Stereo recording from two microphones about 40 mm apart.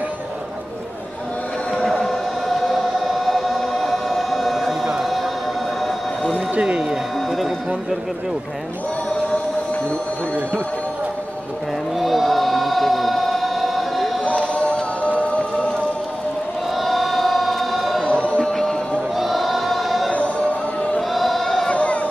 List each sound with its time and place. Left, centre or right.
2.0 s choir: centre
6.6 s a sound: right
7.2 s run: centre
12.0 s choir: centre
14.5 s music: left
16.7 s choir: centre
18.0 s music: left
18.4 s music: centre
19.1 s choir: centre
21.1 s a sound: centre
21.6 s a sound: left